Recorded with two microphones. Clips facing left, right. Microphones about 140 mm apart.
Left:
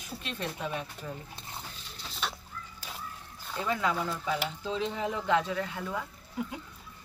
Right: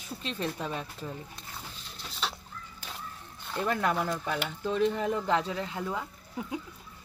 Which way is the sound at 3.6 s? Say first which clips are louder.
Right 2 dB; 55° right (ahead or behind).